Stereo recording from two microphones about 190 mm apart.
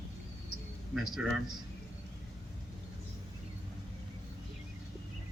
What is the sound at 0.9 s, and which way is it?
Speech, centre (ahead or behind).